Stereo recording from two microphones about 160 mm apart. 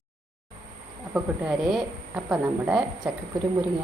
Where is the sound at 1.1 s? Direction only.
5° right (ahead or behind).